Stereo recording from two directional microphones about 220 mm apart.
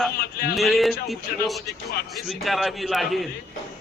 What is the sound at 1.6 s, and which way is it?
Speech, 45° left (ahead or behind).